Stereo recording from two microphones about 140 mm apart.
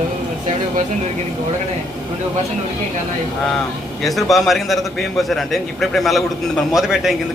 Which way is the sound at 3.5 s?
5° left (ahead or behind).